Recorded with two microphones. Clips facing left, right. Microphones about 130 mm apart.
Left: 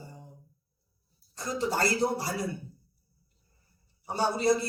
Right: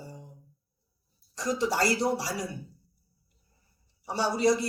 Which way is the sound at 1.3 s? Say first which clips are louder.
Right 2 dB; 90° right.